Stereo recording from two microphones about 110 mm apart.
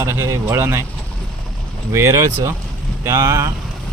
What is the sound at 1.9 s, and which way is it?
Speech, 25° right (ahead or behind).